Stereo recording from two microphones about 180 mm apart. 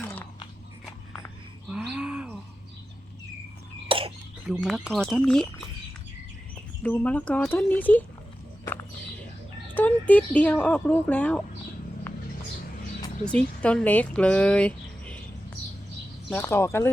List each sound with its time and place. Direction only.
0.0 s biting: 10° left (ahead or behind)
1.6 s bird: 5° right (ahead or behind)
3.8 s a sound: 30° right (ahead or behind)
4.4 s speech: centre (ahead or behind)
6.8 s speech: 5° left (ahead or behind)
8.6 s walk: 15° left (ahead or behind)
9.7 s speech: 10° left (ahead or behind)
13.2 s speech: 5° left (ahead or behind)
16.3 s speech: 10° left (ahead or behind)